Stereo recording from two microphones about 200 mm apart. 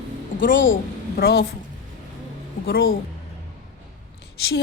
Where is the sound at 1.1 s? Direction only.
50° left (ahead or behind).